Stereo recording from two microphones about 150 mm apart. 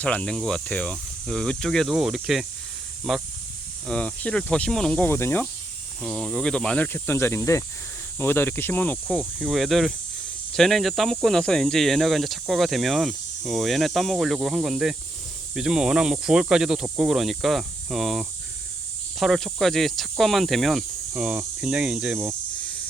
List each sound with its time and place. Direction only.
0.0 s speech: 10° left (ahead or behind)
6.0 s speech: centre (ahead or behind)
21.2 s cricket: 5° right (ahead or behind)